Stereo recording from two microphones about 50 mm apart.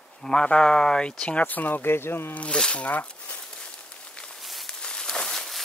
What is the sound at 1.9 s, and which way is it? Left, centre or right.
Speech, left.